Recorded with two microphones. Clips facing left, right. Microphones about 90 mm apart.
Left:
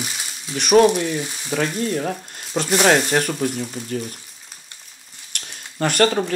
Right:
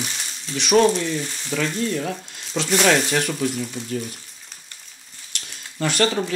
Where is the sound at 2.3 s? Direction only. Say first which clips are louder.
Left 2 dB; 45° left (ahead or behind).